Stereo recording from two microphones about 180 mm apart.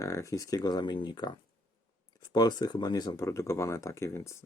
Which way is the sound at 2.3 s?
20° left (ahead or behind).